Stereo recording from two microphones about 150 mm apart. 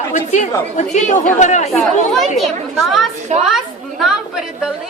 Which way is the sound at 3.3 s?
50° right (ahead or behind).